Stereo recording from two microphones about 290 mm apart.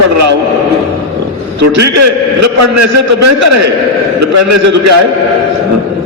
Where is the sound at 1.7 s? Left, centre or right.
Right.